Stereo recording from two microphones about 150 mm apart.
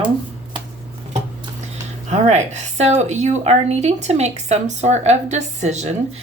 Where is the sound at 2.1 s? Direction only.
50° right (ahead or behind).